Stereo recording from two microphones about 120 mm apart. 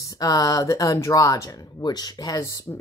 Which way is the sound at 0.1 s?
30° left (ahead or behind).